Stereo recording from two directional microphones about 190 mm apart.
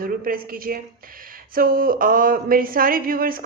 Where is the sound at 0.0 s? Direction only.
50° right (ahead or behind).